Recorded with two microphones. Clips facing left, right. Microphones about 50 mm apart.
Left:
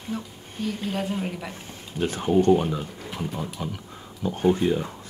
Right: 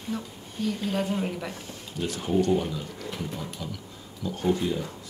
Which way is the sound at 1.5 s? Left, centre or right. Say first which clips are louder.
Even; left.